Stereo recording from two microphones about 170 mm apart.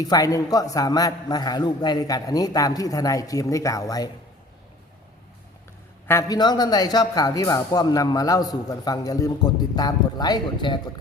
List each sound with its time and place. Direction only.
0.0 s a man's voice: 20° left (ahead or behind)
6.1 s a man's voice: 20° left (ahead or behind)